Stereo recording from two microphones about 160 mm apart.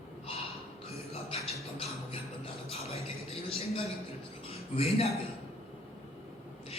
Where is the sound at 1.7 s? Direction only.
35° left (ahead or behind).